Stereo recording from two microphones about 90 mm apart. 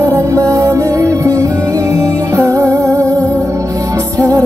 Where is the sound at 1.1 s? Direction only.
35° right (ahead or behind).